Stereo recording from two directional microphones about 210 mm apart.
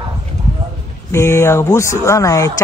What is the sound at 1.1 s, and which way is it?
A man's voice, 15° left (ahead or behind).